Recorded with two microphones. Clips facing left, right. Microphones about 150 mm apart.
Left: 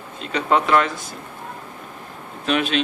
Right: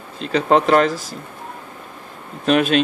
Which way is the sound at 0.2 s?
35° right (ahead or behind).